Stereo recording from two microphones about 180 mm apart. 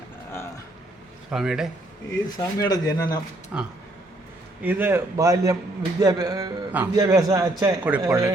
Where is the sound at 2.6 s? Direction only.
20° left (ahead or behind).